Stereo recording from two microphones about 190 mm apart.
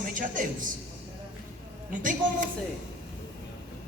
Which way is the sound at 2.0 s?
45° right (ahead or behind).